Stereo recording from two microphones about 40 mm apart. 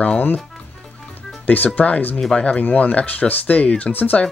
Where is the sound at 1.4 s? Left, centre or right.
Left.